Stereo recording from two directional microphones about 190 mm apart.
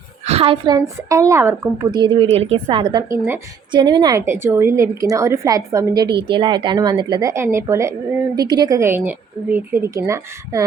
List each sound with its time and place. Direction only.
0.3 s a woman's voice: 30° right (ahead or behind)